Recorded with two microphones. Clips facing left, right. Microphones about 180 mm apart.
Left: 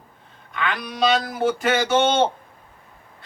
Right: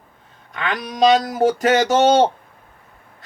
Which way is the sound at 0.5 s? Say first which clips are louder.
Right 2 dB; 40° right (ahead or behind).